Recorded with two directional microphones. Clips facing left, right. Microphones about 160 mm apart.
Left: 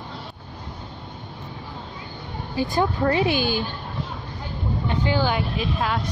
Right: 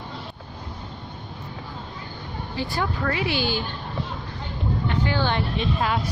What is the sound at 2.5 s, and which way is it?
Speech, 20° left (ahead or behind).